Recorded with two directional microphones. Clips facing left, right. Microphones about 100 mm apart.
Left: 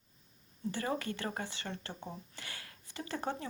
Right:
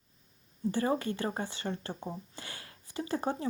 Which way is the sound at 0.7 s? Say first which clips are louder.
Right 6 dB; 30° right (ahead or behind).